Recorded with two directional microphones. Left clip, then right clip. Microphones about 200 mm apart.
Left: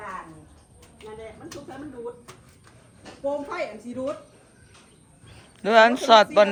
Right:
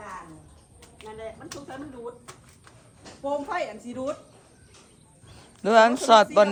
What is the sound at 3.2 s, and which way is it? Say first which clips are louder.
Speech: even; 5° right (ahead or behind).